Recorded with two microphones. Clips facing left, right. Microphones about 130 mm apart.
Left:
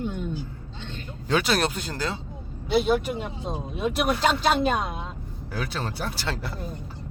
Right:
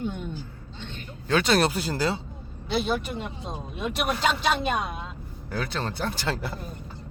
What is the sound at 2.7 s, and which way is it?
Speech, 5° left (ahead or behind).